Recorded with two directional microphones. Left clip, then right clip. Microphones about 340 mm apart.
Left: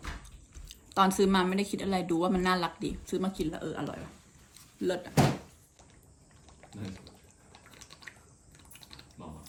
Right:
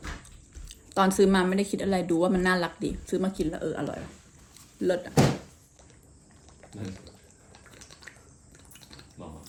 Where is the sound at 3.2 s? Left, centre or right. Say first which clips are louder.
Right 4 dB; right.